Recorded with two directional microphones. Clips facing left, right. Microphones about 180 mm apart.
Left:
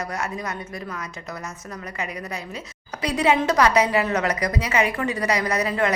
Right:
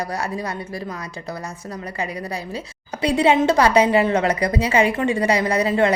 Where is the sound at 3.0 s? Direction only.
30° right (ahead or behind).